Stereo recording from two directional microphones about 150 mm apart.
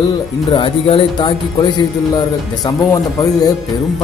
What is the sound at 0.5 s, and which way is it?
Speech, 35° left (ahead or behind).